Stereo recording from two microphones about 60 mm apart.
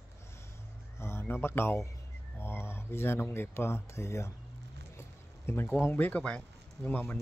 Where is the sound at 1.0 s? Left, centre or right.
Left.